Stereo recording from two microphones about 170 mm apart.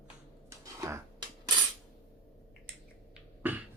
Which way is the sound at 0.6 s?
20° right (ahead or behind).